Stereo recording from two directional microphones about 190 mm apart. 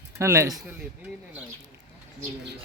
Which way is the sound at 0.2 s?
15° right (ahead or behind).